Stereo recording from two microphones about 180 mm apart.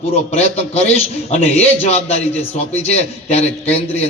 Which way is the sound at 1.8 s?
35° left (ahead or behind).